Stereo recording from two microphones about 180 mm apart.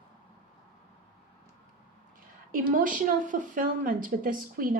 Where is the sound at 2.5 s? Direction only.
50° right (ahead or behind).